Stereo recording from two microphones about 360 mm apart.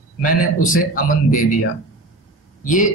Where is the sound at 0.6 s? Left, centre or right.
Left.